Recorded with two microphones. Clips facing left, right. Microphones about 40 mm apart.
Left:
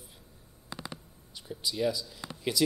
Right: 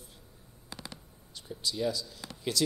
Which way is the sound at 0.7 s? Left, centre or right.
Centre.